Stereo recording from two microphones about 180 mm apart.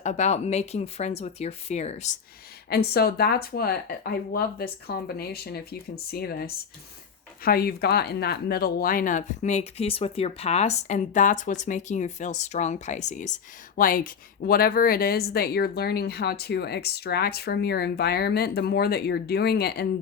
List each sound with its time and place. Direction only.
0.0 s speech: 40° left (ahead or behind)
2.6 s speech: 65° left (ahead or behind)